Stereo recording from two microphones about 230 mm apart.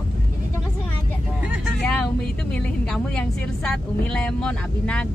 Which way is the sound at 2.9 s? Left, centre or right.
Centre.